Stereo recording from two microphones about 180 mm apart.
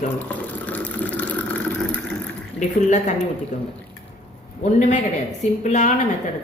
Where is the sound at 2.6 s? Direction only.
40° left (ahead or behind).